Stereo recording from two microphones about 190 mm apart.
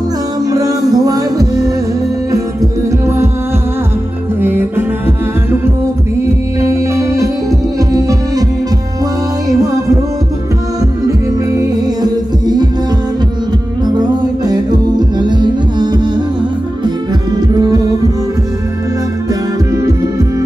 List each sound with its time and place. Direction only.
0.5 s music: 20° right (ahead or behind)
4.4 s music: 10° right (ahead or behind)
6.6 s music: 15° right (ahead or behind)
11.1 s music: 20° right (ahead or behind)
13.8 s music: 20° right (ahead or behind)
17.4 s music: 20° right (ahead or behind)
19.7 s music: 15° right (ahead or behind)